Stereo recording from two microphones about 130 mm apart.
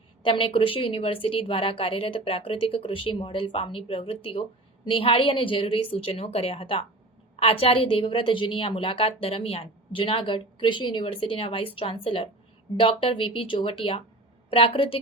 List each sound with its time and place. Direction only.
0.2 s a woman's voice: 40° left (ahead or behind)